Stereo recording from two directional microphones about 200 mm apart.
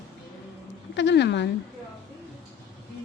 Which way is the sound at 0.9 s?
60° left (ahead or behind).